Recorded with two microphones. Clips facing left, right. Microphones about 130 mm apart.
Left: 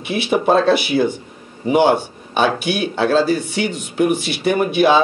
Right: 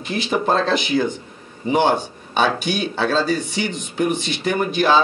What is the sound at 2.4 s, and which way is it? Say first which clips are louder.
Speech: left 3 dB; 60° left (ahead or behind).